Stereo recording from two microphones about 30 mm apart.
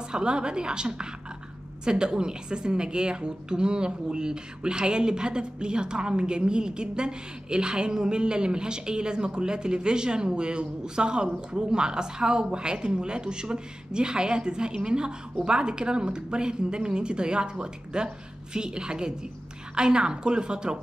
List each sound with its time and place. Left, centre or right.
0.1 s a woman's voice: right